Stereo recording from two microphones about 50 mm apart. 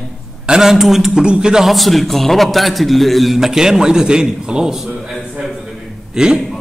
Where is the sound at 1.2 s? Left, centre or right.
Centre.